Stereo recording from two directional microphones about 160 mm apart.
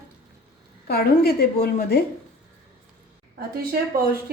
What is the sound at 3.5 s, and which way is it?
Speech, 70° right (ahead or behind).